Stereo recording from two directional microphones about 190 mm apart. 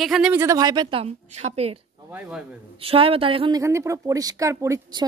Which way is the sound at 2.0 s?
10° right (ahead or behind).